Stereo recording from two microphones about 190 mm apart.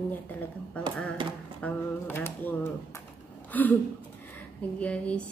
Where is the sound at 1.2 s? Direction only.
25° right (ahead or behind).